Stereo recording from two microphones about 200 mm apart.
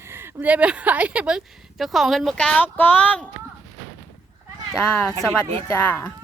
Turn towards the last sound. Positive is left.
turn(degrees=10)  # may be behind; listen again after turning